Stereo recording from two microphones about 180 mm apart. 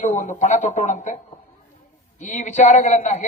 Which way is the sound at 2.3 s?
40° left (ahead or behind).